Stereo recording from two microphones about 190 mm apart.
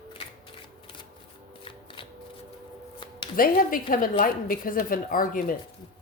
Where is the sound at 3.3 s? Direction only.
50° left (ahead or behind).